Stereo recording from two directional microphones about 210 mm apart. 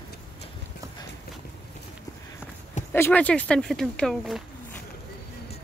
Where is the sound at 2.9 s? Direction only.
10° left (ahead or behind).